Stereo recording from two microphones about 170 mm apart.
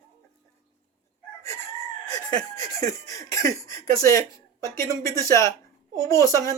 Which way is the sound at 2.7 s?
20° left (ahead or behind).